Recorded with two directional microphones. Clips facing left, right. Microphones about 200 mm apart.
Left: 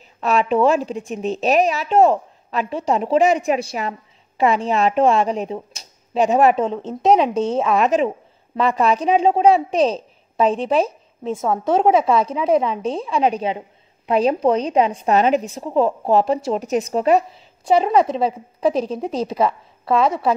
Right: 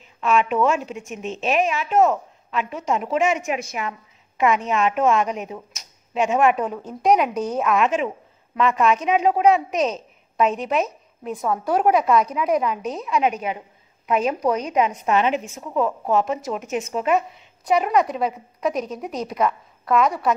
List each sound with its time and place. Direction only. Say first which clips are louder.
0.2 s a woman's voice: left 3 dB; 35° left (ahead or behind)
6.6 s a woman's voice: left 4 dB; 25° left (ahead or behind)